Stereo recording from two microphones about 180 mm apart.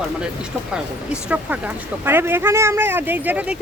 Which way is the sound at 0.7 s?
5° right (ahead or behind).